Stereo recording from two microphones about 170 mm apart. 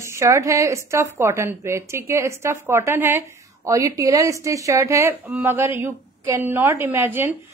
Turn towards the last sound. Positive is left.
turn(degrees=-10)  # may be behind; listen again after turning